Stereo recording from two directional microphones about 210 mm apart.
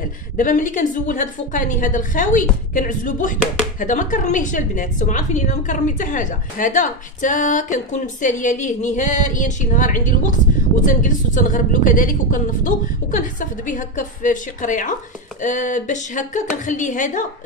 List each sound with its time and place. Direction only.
0.4 s a woman's voice: 40° left (ahead or behind)